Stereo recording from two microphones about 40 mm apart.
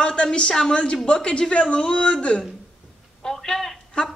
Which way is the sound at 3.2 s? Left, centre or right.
Centre.